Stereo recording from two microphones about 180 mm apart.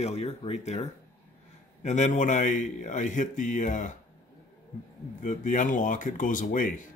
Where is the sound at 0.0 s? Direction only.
35° left (ahead or behind).